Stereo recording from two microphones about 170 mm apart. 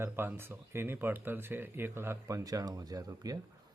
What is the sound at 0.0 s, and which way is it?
Speech, 15° right (ahead or behind).